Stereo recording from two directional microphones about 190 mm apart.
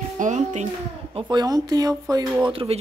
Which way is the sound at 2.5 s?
30° right (ahead or behind).